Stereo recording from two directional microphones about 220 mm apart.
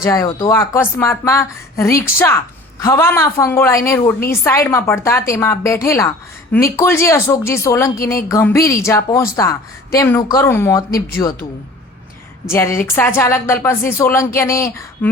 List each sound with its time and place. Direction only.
0.0 s a woman's voice: 15° left (ahead or behind)
12.5 s a woman's voice: 10° left (ahead or behind)